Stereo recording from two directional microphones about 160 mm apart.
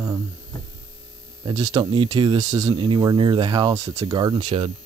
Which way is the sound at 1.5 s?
25° right (ahead or behind).